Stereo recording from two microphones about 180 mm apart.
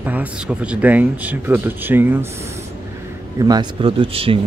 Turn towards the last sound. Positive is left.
turn(degrees=-30)  # may be behind; listen again after turning